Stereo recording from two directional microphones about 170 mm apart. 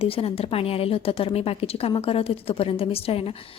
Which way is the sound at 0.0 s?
35° left (ahead or behind).